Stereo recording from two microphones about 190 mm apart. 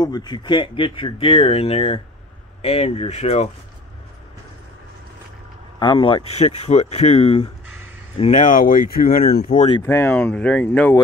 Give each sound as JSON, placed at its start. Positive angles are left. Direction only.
{"t": 0.0, "sound": "speech", "side_deg": 20}
{"t": 5.8, "sound": "speech", "side_deg": 25}
{"t": 9.4, "sound": "speech", "side_deg": 40}
{"t": 9.8, "sound": "speech", "side_deg": 10}